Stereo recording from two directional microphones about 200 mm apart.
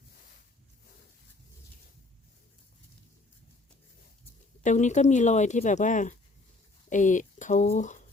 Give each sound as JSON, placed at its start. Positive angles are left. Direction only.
{"t": 4.6, "sound": "speech", "side_deg": 35}